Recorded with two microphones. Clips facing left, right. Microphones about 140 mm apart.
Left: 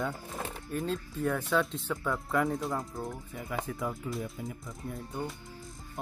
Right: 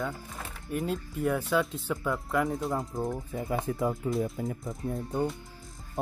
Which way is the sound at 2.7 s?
20° right (ahead or behind).